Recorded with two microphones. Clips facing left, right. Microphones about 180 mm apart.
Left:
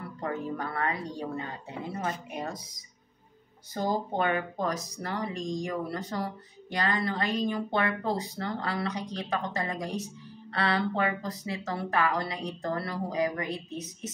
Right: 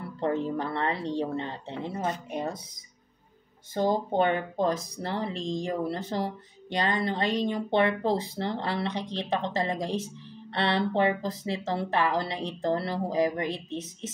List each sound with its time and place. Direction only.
0.2 s speech: 25° right (ahead or behind)
3.7 s speech: 25° right (ahead or behind)